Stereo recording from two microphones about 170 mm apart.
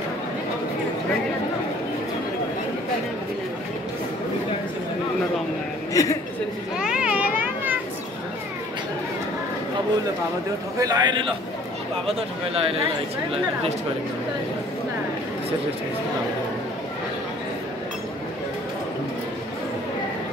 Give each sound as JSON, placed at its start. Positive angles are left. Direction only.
{"t": 6.0, "sound": "a woman's voice", "side_deg": 20}
{"t": 6.8, "sound": "a sound", "side_deg": -5}
{"t": 10.8, "sound": "a man's voice", "side_deg": -25}